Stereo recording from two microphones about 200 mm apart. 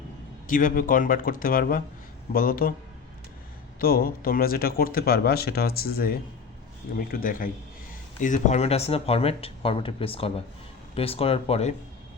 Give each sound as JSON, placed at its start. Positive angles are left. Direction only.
{"t": 0.4, "sound": "speech", "side_deg": 40}
{"t": 3.8, "sound": "speech", "side_deg": 50}